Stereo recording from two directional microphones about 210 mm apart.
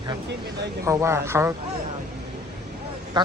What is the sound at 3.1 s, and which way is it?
Speech, 20° right (ahead or behind).